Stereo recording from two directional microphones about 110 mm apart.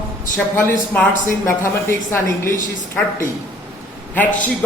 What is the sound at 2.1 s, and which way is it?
Speech, 25° left (ahead or behind).